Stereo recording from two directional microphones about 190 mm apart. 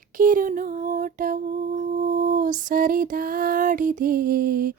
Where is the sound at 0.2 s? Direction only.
45° right (ahead or behind).